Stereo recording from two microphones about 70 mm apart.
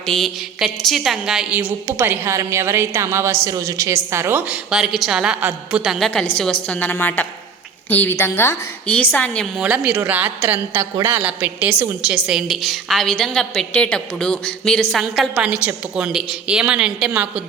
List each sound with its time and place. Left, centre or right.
0.0 s a sound: centre
0.6 s a woman's voice: centre
1.9 s a woman's voice: right
4.4 s a woman's voice: centre
4.8 s a woman's voice: centre
6.0 s a woman's voice: centre; by 8.1 s left
8.2 s a woman's voice: left
8.9 s a woman's voice: left
9.6 s a woman's voice: centre
12.0 s a woman's voice: centre
14.9 s a woman's voice: centre
15.4 s a woman's voice: centre